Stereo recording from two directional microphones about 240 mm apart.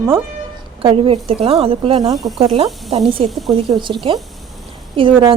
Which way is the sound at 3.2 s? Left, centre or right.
Centre.